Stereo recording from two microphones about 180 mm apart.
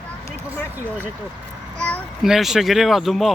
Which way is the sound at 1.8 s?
5° left (ahead or behind).